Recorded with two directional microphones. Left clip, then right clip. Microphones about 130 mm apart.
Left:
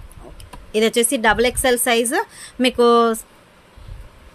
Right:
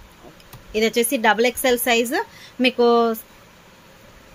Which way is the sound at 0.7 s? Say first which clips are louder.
Left 2 dB; 30° left (ahead or behind).